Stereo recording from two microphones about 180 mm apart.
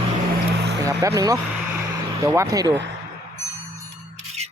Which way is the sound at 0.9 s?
20° right (ahead or behind).